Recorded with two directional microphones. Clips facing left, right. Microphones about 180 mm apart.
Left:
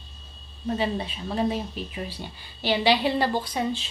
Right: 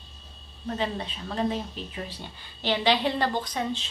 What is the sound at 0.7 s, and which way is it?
A woman's voice, 10° left (ahead or behind).